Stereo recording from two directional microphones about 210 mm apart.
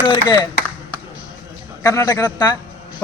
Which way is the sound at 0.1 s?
20° left (ahead or behind).